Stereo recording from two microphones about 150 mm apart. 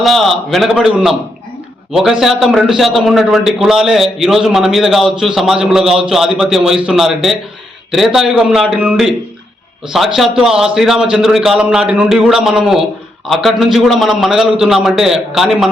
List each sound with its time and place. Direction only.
0.0 s a man's voice: centre (ahead or behind)